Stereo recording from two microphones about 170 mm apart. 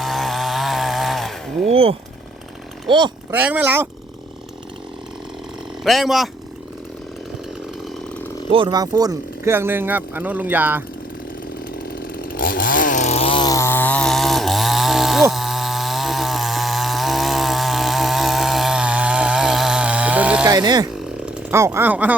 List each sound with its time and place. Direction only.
0.0 s chainsaw: centre (ahead or behind)
1.6 s a sound: 35° right (ahead or behind)
2.9 s speech: 30° right (ahead or behind)
3.3 s speech: 10° right (ahead or behind)
5.8 s speech: centre (ahead or behind)
8.4 s speech: 30° right (ahead or behind); by 10.8 s 10° right (ahead or behind)
11.8 s chainsaw: 60° left (ahead or behind); by 20.5 s 10° right (ahead or behind)
20.5 s speech: 25° right (ahead or behind)